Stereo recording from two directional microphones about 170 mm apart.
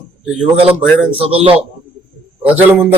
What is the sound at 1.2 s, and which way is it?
Speech, 35° right (ahead or behind).